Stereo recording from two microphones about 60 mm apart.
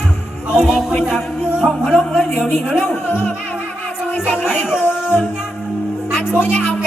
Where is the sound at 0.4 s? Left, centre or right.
Centre.